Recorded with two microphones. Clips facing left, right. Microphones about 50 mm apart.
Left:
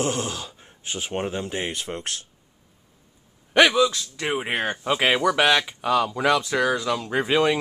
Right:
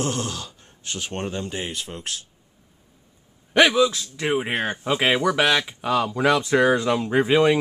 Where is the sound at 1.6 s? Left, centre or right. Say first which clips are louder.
Left 2 dB; left.